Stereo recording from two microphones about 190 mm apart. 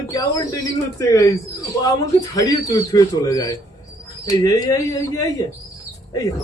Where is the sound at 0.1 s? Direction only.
20° left (ahead or behind).